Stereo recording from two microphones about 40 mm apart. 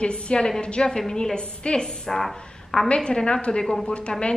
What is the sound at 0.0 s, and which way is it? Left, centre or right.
A woman's voice, left.